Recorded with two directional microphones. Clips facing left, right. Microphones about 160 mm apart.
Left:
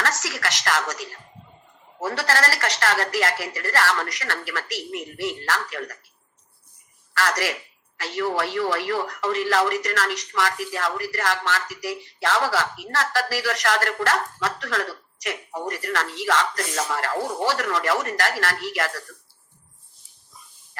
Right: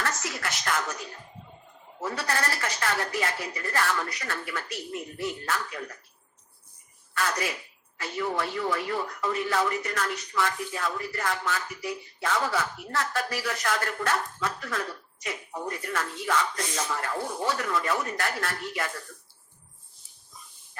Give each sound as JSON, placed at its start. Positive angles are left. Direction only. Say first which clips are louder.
{"t": 0.0, "sound": "speech", "louder": "left 4 dB", "side_deg": 90}
{"t": 7.1, "sound": "a man's voice", "louder": "left 5 dB", "side_deg": 90}